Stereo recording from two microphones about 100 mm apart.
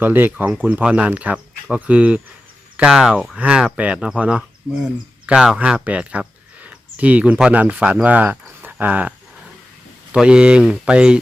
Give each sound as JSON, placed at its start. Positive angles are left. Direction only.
{"t": 0.0, "sound": "speech", "side_deg": -20}